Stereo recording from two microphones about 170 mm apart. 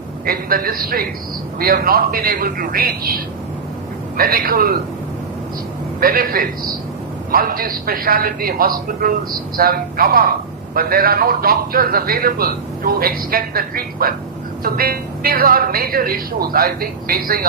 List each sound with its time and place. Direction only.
0.3 s a man's voice: 60° right (ahead or behind)
4.2 s a man's voice: 60° right (ahead or behind)
6.0 s a man's voice: 60° right (ahead or behind)